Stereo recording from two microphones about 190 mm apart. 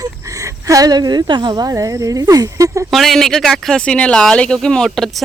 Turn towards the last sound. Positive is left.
turn(degrees=0)  # may be behind; listen again after turning